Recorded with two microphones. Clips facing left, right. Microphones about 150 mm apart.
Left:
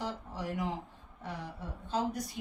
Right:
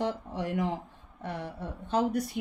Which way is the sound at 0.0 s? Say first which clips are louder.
Right 6 dB; 60° right (ahead or behind).